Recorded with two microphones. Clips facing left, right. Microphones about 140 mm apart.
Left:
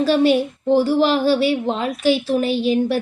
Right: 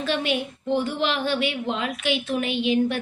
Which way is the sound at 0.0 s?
35° left (ahead or behind).